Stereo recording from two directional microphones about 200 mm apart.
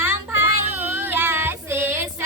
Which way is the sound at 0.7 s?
10° right (ahead or behind).